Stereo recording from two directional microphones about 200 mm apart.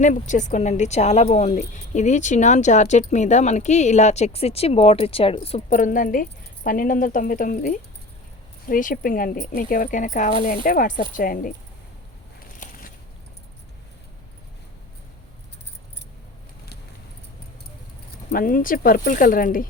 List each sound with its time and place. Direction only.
0.0 s speech: 40° left (ahead or behind)
12.5 s crushing: 45° left (ahead or behind)
18.3 s speech: 45° left (ahead or behind)